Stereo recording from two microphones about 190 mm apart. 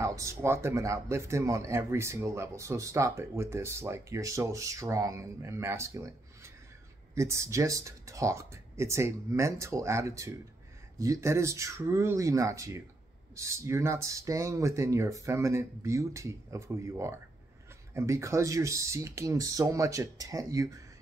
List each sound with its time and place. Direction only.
0.0 s speech: 15° right (ahead or behind)